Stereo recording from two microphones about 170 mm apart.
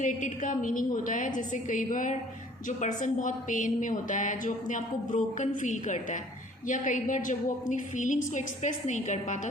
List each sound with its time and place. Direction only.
0.0 s a woman's voice: 50° left (ahead or behind)